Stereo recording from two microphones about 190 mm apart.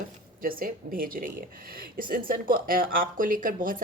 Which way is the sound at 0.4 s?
50° right (ahead or behind).